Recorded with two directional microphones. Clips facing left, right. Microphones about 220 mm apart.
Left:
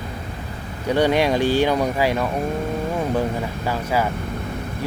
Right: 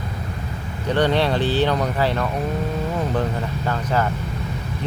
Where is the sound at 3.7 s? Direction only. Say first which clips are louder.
Even; 10° left (ahead or behind).